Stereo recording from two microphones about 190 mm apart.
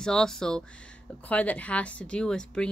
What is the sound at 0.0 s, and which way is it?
A woman's voice, 5° left (ahead or behind).